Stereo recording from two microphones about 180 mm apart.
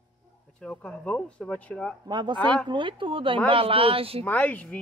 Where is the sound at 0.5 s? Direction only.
5° left (ahead or behind).